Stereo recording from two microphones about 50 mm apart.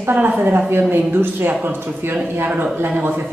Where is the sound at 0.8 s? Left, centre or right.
Right.